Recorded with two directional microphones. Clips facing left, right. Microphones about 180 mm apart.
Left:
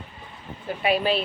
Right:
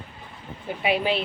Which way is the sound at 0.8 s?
15° right (ahead or behind).